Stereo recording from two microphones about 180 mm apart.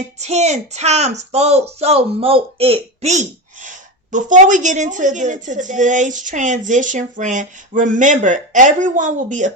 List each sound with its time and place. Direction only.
0.2 s speech: 40° right (ahead or behind)